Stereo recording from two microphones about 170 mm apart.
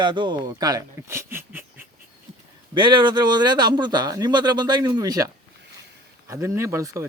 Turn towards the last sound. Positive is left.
turn(degrees=-20)  # may be behind; listen again after turning